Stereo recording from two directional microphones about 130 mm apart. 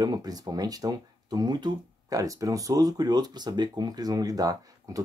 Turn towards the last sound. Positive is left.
turn(degrees=-30)  # may be behind; listen again after turning